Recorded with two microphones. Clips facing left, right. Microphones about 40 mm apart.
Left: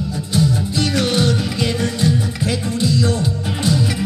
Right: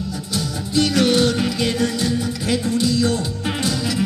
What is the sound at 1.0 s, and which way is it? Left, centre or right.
Music, left.